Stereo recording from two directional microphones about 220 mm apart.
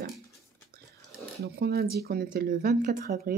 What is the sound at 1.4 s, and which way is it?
Speech, 45° right (ahead or behind).